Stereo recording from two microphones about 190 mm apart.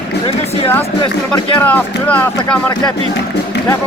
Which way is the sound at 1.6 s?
10° left (ahead or behind).